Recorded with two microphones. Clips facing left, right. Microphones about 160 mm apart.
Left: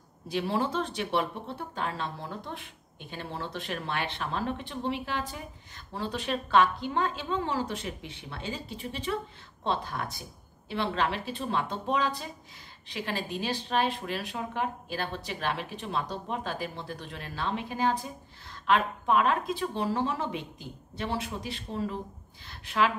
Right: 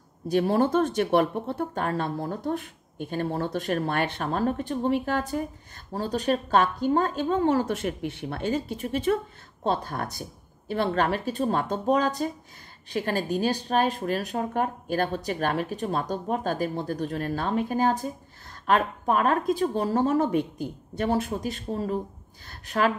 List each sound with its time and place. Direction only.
0.3 s speech: 45° right (ahead or behind)